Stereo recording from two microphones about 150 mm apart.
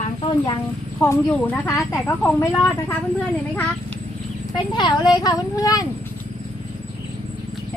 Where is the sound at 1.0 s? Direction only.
5° left (ahead or behind).